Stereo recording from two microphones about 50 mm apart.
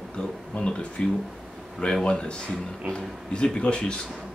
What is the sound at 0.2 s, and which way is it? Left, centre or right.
Speech, centre.